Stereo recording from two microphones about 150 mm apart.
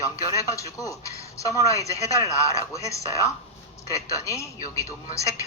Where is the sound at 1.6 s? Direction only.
20° left (ahead or behind).